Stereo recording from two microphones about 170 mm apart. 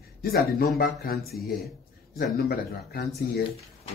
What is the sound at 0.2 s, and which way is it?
Speech, 60° left (ahead or behind).